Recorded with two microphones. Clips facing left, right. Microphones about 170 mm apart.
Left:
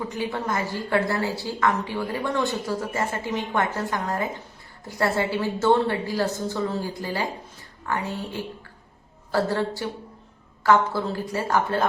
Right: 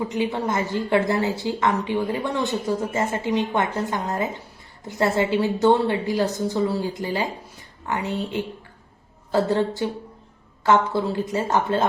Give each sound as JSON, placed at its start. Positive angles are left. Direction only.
{"t": 0.1, "sound": "a woman's voice", "side_deg": -20}